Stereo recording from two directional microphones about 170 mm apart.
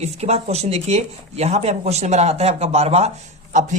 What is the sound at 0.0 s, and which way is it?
Speech, 40° right (ahead or behind).